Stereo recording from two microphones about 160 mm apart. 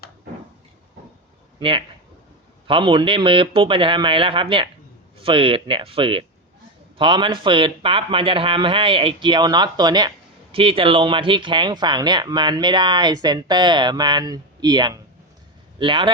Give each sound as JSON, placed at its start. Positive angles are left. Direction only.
{"t": 2.6, "sound": "a man's voice", "side_deg": -30}